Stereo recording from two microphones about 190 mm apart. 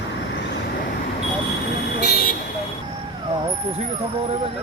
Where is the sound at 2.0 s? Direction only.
55° left (ahead or behind).